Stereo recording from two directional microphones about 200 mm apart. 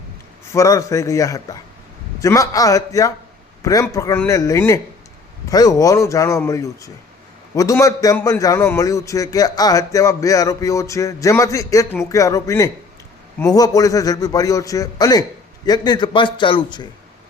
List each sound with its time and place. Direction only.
0.4 s a man's voice: 15° left (ahead or behind)